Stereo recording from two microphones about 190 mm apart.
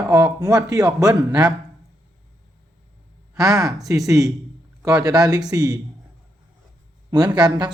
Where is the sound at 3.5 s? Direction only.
Centre (ahead or behind).